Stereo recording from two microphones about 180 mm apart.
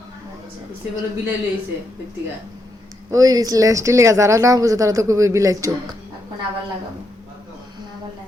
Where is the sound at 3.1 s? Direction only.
20° right (ahead or behind).